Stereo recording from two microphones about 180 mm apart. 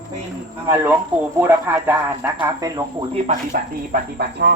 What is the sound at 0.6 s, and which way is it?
Speech, 15° right (ahead or behind).